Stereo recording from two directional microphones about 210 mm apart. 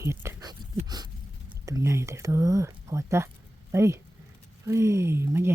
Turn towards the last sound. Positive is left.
turn(degrees=-10)  # may be behind; listen again after turning